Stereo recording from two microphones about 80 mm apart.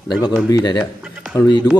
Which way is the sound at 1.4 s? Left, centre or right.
Left.